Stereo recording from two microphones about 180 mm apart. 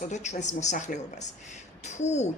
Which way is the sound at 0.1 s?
40° left (ahead or behind).